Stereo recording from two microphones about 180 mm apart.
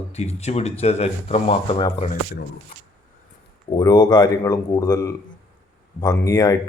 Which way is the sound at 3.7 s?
25° left (ahead or behind).